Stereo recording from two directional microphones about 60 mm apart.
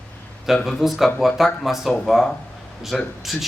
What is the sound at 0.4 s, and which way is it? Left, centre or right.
Speech, centre.